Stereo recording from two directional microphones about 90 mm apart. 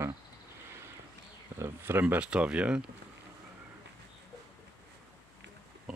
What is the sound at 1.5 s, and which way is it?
Speech, 25° right (ahead or behind).